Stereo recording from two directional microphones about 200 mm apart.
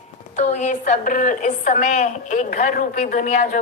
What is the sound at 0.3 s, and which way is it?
A woman's voice, 35° left (ahead or behind).